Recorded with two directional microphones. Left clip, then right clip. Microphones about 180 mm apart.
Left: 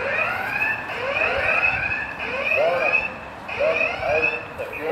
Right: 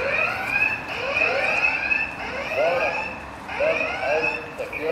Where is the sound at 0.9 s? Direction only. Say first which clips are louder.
Even; 10° left (ahead or behind).